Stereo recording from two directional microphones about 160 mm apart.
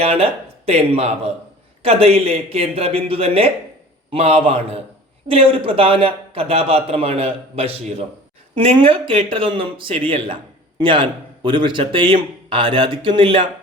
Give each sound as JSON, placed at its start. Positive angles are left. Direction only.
{"t": 0.0, "sound": "a man's voice", "side_deg": -35}